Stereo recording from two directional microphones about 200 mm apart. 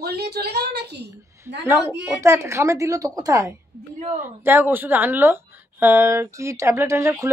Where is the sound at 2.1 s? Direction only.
15° right (ahead or behind).